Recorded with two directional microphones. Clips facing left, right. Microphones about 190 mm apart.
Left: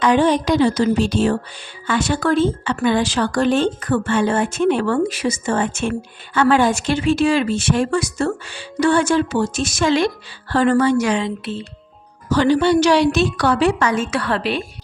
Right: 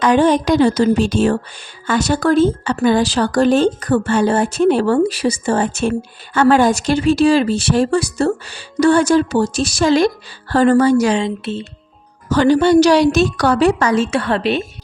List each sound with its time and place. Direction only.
0.0 s speech: 45° right (ahead or behind); by 11.6 s 25° right (ahead or behind)
12.3 s speech: 45° right (ahead or behind); by 14.6 s 25° right (ahead or behind)